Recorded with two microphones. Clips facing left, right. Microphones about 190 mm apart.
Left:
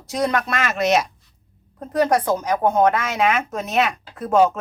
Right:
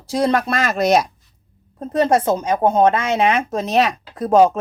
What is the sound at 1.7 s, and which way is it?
Speech, 25° right (ahead or behind).